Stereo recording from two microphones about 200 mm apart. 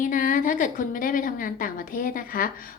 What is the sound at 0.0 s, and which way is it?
A woman's voice, 40° left (ahead or behind).